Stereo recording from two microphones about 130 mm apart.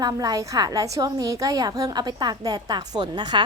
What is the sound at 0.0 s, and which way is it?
A woman's voice, 30° right (ahead or behind).